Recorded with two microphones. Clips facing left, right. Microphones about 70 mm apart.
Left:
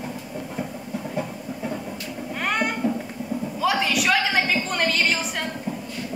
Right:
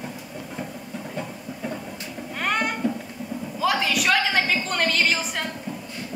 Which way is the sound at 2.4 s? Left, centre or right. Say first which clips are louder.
Even; centre.